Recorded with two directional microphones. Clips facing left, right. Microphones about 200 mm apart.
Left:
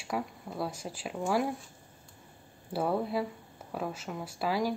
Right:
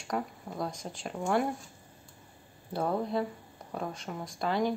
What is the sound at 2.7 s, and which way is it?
Speech, 5° left (ahead or behind).